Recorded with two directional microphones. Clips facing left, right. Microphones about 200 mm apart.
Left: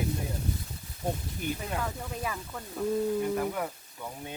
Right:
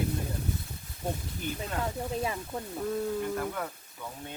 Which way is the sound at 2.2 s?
25° right (ahead or behind).